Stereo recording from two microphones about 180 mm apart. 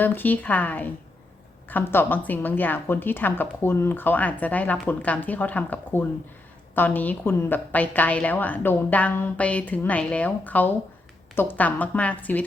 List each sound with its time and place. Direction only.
0.0 s a woman's voice: 10° left (ahead or behind)